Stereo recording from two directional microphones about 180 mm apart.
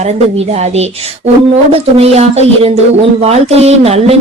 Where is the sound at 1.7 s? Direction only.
35° right (ahead or behind).